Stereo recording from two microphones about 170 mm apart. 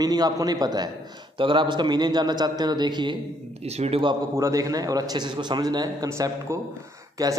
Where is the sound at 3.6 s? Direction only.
40° right (ahead or behind).